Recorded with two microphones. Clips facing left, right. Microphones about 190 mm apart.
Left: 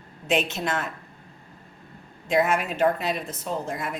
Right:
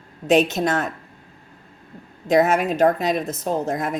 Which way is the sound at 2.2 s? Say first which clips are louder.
Right 5 dB; 40° right (ahead or behind).